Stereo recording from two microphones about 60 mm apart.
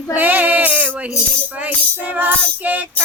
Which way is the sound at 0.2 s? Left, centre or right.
Right.